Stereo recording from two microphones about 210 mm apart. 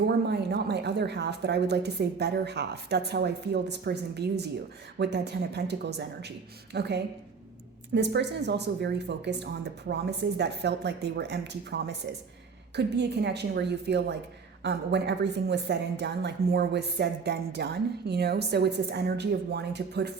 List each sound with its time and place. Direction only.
0.0 s a woman's voice: 50° right (ahead or behind)